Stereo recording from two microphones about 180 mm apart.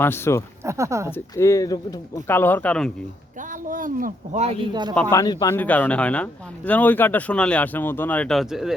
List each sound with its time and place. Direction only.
0.0 s speech: 15° left (ahead or behind)
0.6 s speech: 15° right (ahead or behind)
1.1 s speech: 15° left (ahead or behind)
3.7 s speech: 50° right (ahead or behind)
4.7 s speech: 25° right (ahead or behind)
4.9 s speech: 15° left (ahead or behind)
5.5 s speech: 10° left (ahead or behind)